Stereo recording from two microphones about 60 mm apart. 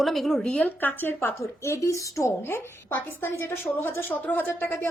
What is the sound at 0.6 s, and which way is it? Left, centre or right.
Speech, left.